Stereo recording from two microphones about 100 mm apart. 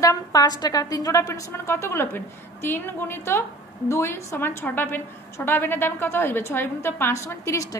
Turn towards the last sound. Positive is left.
turn(degrees=30)  # may be behind; listen again after turning